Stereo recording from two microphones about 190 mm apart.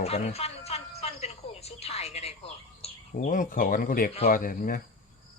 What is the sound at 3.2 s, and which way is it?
Speech, 45° left (ahead or behind).